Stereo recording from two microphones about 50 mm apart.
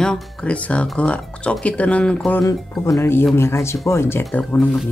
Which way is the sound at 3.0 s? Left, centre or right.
Left.